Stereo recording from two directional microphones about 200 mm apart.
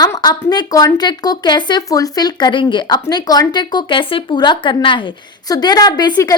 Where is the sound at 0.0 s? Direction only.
20° left (ahead or behind).